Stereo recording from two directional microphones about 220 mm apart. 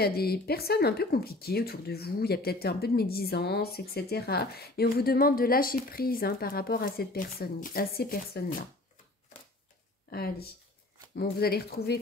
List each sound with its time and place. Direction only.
0.0 s speech: 45° left (ahead or behind)
10.0 s speech: 45° left (ahead or behind)